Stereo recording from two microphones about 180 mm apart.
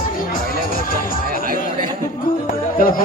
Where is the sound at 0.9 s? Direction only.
50° left (ahead or behind).